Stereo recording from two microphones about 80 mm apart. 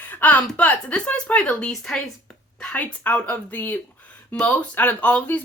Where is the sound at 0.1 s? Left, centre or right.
Centre.